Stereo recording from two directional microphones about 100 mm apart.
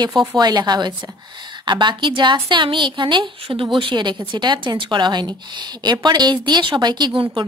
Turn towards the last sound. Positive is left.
turn(degrees=-45)  # may be behind; listen again after turning